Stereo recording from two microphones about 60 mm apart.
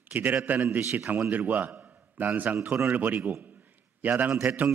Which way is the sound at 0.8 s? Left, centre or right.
Right.